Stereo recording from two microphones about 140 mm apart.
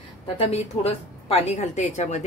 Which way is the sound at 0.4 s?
45° left (ahead or behind).